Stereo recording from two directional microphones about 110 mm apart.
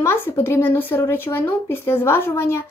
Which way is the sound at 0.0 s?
20° left (ahead or behind).